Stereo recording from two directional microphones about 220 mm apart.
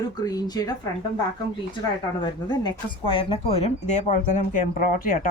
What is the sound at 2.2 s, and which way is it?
Speech, 20° left (ahead or behind).